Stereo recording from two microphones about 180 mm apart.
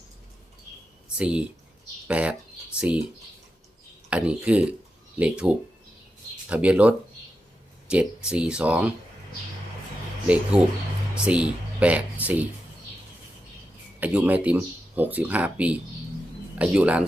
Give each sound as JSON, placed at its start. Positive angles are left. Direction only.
{"t": 1.0, "sound": "speech", "side_deg": -5}
{"t": 4.1, "sound": "speech", "side_deg": -5}
{"t": 10.2, "sound": "speech", "side_deg": -5}
{"t": 14.0, "sound": "speech", "side_deg": -10}